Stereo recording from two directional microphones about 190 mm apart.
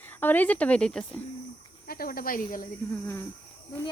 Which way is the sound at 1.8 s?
50° left (ahead or behind).